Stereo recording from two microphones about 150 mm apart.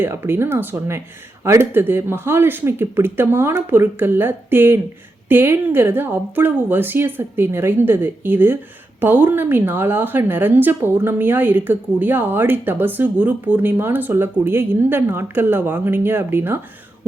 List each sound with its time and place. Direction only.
0.0 s a woman's voice: 15° right (ahead or behind)